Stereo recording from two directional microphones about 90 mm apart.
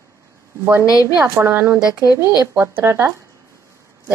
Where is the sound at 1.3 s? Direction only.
25° right (ahead or behind).